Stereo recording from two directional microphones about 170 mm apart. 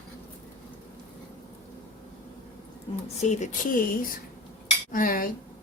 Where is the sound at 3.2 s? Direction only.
45° left (ahead or behind).